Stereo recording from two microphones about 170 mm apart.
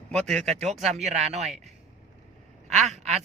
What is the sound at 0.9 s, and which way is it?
Speech, 40° right (ahead or behind).